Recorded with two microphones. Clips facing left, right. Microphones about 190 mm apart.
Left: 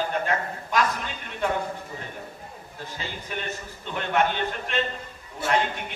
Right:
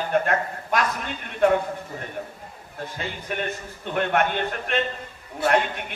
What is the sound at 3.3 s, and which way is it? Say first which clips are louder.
A man's voice: right 5 dB; 55° right (ahead or behind).